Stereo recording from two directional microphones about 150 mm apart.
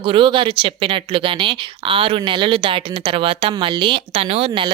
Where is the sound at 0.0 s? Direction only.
35° right (ahead or behind).